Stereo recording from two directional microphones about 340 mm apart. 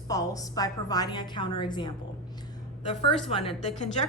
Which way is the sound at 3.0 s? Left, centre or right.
Centre.